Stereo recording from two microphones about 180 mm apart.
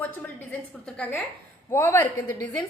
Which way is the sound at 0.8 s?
5° left (ahead or behind).